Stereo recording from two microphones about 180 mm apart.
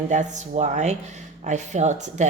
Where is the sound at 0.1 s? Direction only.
40° right (ahead or behind).